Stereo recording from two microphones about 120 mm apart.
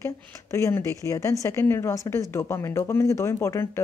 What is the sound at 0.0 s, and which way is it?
Speech, 25° left (ahead or behind).